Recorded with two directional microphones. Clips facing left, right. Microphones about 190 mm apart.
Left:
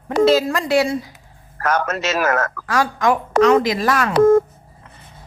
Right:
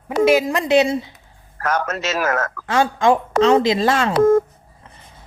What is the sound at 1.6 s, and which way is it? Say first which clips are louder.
Speech: left 2 dB; 65° left (ahead or behind).